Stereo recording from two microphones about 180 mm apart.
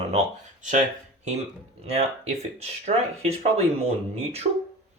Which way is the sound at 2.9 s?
45° right (ahead or behind).